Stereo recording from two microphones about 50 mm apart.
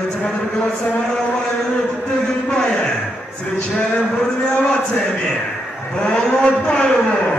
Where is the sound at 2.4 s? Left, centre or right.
Centre.